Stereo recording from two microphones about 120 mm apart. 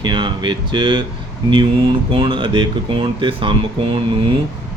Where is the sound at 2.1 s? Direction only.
40° right (ahead or behind).